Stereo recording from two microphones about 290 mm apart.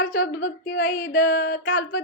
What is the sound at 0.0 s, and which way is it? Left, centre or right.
Speech, left.